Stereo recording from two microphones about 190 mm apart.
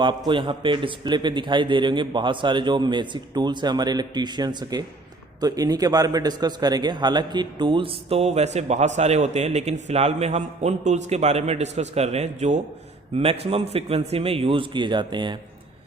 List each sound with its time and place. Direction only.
0.0 s a man's voice: 25° right (ahead or behind)